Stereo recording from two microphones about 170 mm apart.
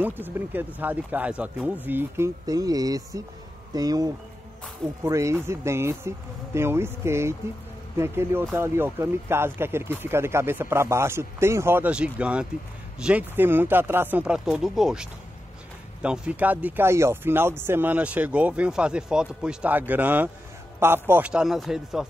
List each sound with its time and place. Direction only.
0.0 s speech: 10° right (ahead or behind)